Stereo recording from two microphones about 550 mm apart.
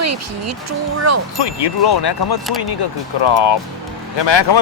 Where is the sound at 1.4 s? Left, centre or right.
Left.